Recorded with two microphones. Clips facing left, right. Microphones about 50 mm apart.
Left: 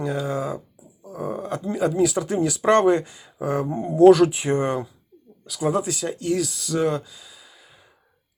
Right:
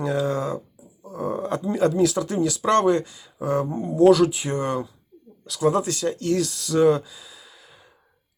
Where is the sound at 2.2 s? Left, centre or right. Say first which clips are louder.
Left 1 dB; left.